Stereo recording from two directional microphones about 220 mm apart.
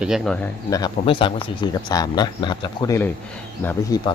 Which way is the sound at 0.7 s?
20° left (ahead or behind).